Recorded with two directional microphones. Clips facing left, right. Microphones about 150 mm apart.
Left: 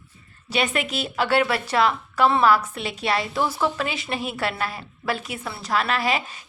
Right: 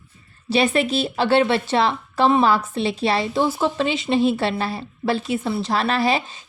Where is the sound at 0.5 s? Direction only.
30° right (ahead or behind).